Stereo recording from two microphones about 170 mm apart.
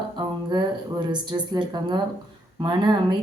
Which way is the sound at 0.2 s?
25° right (ahead or behind).